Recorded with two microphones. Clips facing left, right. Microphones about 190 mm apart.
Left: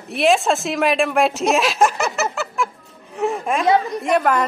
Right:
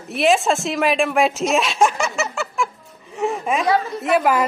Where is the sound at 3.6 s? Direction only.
15° left (ahead or behind).